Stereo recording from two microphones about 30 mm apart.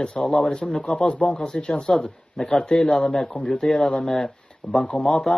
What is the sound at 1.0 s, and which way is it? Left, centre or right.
Speech, left.